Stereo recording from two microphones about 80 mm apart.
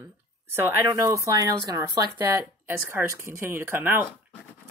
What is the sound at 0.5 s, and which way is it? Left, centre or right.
Speech, right.